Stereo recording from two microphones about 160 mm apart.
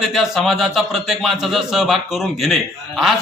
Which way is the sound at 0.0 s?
Centre (ahead or behind).